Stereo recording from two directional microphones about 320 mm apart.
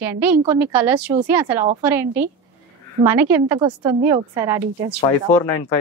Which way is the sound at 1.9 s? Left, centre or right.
Centre.